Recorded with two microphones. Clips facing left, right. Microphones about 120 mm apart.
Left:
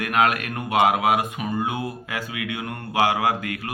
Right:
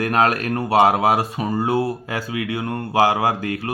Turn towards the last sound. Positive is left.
turn(degrees=-30)  # may be behind; listen again after turning